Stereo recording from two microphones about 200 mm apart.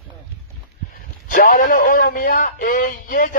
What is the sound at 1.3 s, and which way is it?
A man's voice, 45° left (ahead or behind).